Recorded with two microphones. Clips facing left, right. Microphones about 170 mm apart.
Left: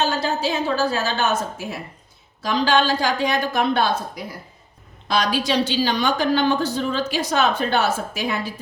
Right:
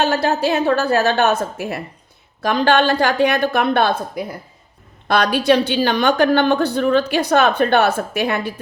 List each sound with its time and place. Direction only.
0.0 s a woman's voice: 60° right (ahead or behind)